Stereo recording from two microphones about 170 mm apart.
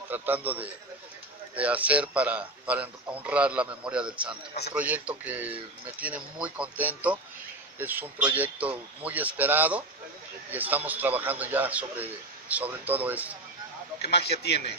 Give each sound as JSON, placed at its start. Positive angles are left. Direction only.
{"t": 0.1, "sound": "speech", "side_deg": -10}
{"t": 14.1, "sound": "a man's voice", "side_deg": 75}